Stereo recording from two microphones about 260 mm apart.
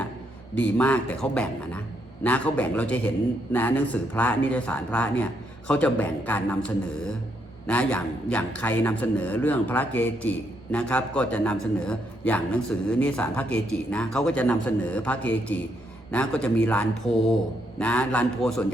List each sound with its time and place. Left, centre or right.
0.5 s a man's voice: centre
7.7 s a man's voice: centre